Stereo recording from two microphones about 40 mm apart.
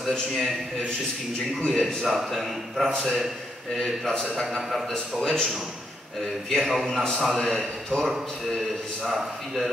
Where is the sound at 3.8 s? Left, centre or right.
Centre.